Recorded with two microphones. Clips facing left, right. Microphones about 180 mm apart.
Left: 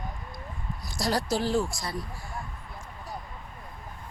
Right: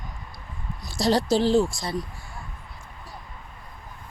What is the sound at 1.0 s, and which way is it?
Speech, 25° right (ahead or behind).